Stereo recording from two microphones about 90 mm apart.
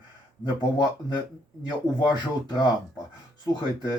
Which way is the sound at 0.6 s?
50° left (ahead or behind).